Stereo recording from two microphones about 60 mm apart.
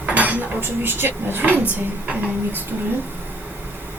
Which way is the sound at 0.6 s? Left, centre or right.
Right.